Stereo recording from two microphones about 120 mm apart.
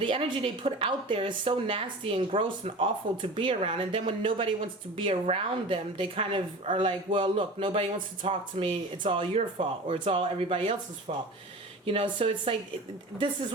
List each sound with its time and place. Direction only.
0.0 s speech: 45° right (ahead or behind)
11.1 s speech: 65° right (ahead or behind)
11.9 s speech: 50° right (ahead or behind)